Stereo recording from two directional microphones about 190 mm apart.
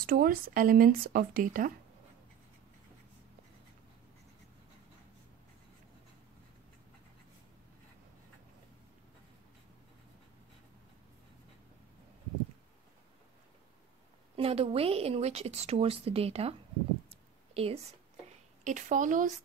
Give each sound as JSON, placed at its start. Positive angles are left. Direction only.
{"t": 0.0, "sound": "speech", "side_deg": -50}
{"t": 14.3, "sound": "a woman's voice", "side_deg": -30}
{"t": 17.1, "sound": "a sound", "side_deg": -30}
{"t": 18.6, "sound": "a woman's voice", "side_deg": -40}